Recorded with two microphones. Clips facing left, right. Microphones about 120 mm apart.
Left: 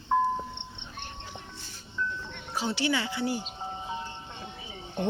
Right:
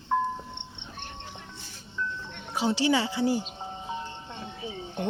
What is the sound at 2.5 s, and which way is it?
Music, 20° right (ahead or behind).